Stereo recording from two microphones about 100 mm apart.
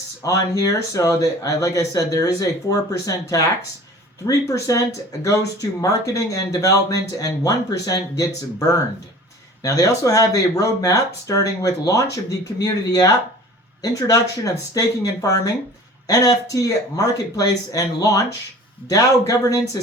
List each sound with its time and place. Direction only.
0.2 s speech: 35° left (ahead or behind)